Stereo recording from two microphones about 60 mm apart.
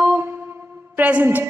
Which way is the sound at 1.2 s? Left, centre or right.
Right.